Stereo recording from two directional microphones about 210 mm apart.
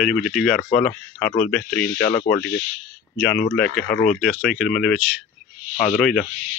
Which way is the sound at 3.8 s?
40° left (ahead or behind).